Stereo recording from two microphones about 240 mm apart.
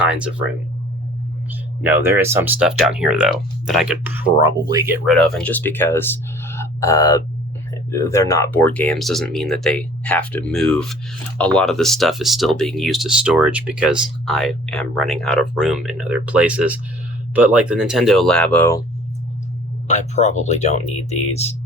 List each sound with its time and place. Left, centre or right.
0.0 s speech: centre
1.8 s speech: centre
5.0 s speech: centre
6.5 s a sound: centre
7.9 s speech: centre
19.9 s speech: left